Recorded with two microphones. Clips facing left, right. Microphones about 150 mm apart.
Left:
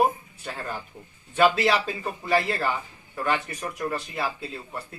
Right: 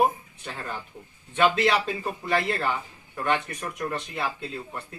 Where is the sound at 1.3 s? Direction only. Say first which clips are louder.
Left 1 dB; 5° left (ahead or behind).